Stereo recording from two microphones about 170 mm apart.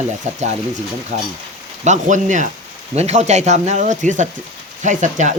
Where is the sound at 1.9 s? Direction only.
45° right (ahead or behind).